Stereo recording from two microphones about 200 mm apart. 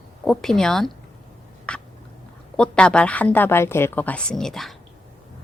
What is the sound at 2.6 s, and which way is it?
Speech, 5° left (ahead or behind).